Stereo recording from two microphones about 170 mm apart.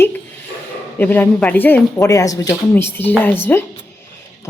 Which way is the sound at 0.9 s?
10° left (ahead or behind).